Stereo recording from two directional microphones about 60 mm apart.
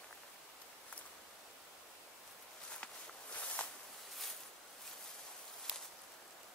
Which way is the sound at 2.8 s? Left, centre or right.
Left.